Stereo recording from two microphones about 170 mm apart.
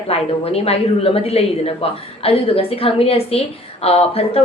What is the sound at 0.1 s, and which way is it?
A woman's voice, 35° left (ahead or behind).